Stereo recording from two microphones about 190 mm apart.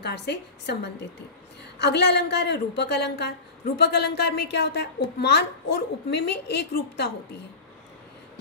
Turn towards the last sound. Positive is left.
turn(degrees=60)  # may be behind; listen again after turning